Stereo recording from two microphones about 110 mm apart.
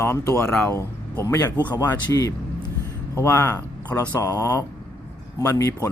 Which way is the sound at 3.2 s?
20° left (ahead or behind).